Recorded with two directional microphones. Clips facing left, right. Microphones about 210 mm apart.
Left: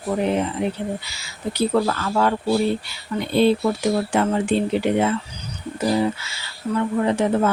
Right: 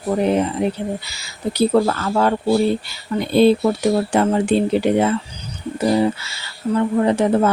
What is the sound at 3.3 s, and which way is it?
Speech, 35° right (ahead or behind).